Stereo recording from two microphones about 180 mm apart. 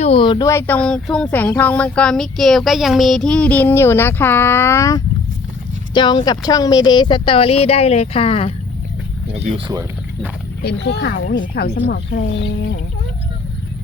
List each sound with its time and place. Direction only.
0.0 s speech: 30° left (ahead or behind)
10.6 s speech: 70° left (ahead or behind)